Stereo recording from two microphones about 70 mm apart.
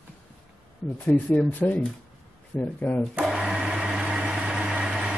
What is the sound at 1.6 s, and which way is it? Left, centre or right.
Speech, centre.